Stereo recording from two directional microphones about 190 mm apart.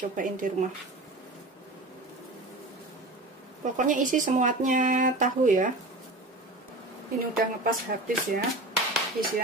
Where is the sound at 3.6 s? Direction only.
40° right (ahead or behind).